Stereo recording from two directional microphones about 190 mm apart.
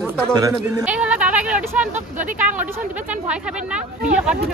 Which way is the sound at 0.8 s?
5° right (ahead or behind).